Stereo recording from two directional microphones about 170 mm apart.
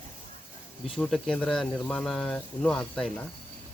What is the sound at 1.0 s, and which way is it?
Speech, 5° left (ahead or behind).